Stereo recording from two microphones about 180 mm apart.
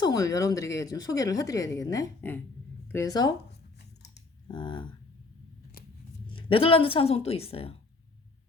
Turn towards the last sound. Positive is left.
turn(degrees=30)  # may be behind; listen again after turning